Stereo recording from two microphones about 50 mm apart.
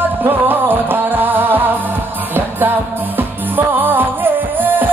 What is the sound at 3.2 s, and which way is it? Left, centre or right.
Music, right.